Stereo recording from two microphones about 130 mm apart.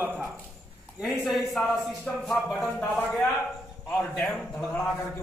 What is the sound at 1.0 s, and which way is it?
A man's voice, centre (ahead or behind).